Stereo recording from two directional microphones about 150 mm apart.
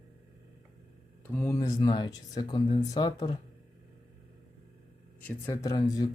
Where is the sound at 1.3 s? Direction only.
15° left (ahead or behind).